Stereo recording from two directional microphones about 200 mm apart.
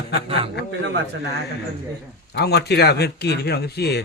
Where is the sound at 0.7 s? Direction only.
65° right (ahead or behind).